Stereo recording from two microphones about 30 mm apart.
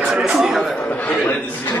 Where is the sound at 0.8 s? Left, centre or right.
Left.